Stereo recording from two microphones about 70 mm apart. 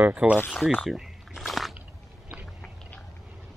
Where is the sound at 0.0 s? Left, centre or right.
Centre.